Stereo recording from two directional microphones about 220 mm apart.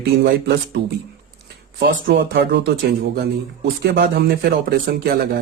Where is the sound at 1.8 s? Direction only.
50° right (ahead or behind).